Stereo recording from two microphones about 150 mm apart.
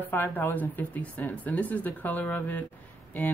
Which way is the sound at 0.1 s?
10° left (ahead or behind).